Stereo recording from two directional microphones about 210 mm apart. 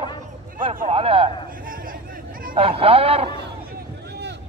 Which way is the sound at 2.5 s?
25° right (ahead or behind).